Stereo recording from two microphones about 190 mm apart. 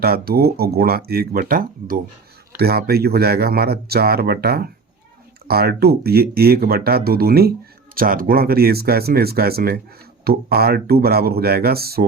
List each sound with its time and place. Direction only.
0.0 s speech: 55° right (ahead or behind)